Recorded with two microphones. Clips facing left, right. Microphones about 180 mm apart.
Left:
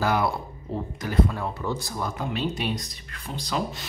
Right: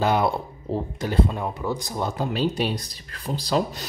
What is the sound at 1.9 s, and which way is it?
Speech, 25° right (ahead or behind).